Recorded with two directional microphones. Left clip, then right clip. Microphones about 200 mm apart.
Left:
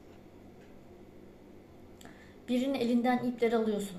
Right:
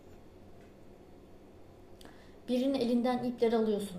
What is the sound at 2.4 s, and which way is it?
A woman's voice, 15° right (ahead or behind).